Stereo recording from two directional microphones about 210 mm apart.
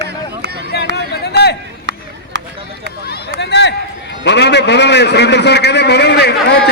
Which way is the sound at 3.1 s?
55° left (ahead or behind).